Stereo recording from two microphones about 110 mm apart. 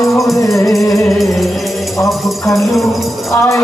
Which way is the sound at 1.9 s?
25° left (ahead or behind).